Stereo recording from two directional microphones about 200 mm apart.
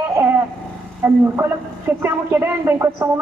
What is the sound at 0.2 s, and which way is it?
Vehicle, 15° right (ahead or behind).